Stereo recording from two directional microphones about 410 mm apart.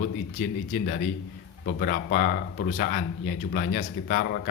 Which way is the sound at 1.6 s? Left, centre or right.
Left.